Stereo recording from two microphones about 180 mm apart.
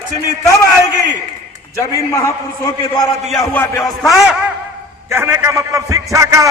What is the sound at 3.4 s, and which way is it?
Speech, 15° left (ahead or behind).